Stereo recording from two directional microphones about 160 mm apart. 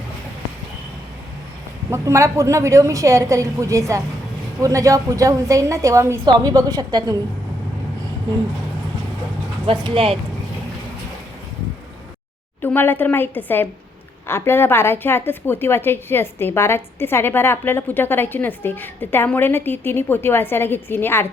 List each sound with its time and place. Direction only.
1.9 s a woman's voice: 20° right (ahead or behind)
9.8 s speech: 35° right (ahead or behind)
12.6 s a woman's voice: 10° left (ahead or behind)